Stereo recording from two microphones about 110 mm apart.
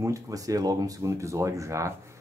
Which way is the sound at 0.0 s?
30° right (ahead or behind).